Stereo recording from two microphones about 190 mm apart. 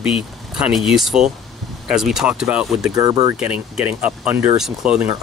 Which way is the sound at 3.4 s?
5° right (ahead or behind).